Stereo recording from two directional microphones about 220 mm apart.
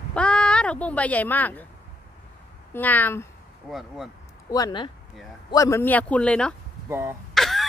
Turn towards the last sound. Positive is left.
turn(degrees=0)  # may be behind; listen again after turning